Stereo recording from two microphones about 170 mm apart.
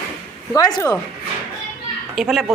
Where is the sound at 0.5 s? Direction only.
20° left (ahead or behind).